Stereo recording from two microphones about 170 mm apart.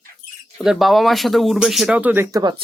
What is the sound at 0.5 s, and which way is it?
Speech, centre (ahead or behind).